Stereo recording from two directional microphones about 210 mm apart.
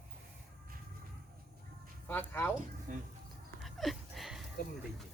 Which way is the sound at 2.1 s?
10° left (ahead or behind).